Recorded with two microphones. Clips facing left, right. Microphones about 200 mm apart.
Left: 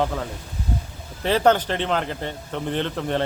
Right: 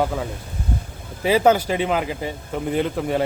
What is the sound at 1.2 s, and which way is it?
A man's voice, 10° right (ahead or behind).